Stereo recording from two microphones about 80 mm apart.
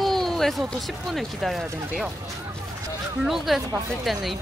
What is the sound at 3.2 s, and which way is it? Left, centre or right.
Speech, centre.